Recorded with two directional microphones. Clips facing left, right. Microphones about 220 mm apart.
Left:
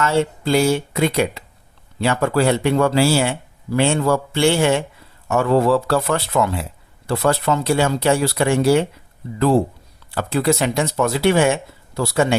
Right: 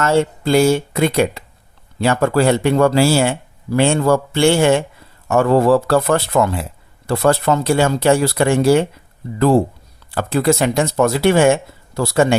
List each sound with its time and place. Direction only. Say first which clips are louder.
0.0 s speech: right 3 dB; 50° right (ahead or behind)
10.1 s speech: right 3 dB; 50° right (ahead or behind)